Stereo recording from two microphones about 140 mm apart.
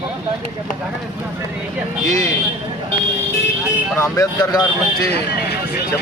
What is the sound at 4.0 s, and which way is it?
Speech, 20° left (ahead or behind).